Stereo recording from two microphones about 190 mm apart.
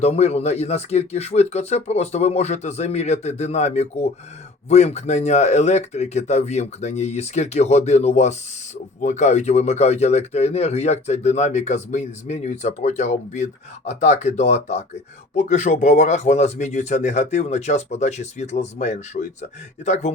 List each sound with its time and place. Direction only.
0.0 s speech: 35° left (ahead or behind)